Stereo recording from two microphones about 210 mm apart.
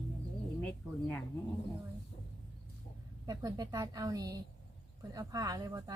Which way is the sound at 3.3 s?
20° right (ahead or behind).